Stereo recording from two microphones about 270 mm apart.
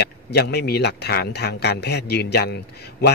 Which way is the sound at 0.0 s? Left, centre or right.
Left.